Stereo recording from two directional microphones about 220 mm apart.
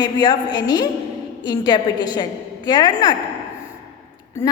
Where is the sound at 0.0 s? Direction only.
20° left (ahead or behind).